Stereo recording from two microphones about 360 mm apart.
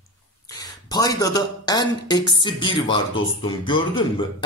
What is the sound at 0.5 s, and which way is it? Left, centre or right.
Speech, centre.